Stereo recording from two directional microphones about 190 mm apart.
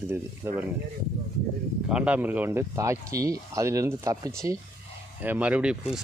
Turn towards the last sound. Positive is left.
turn(degrees=-5)  # may be behind; listen again after turning